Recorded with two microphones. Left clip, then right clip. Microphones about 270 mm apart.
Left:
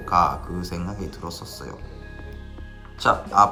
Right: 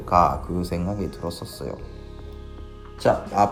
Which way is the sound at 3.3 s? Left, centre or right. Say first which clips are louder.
Left 5 dB; centre.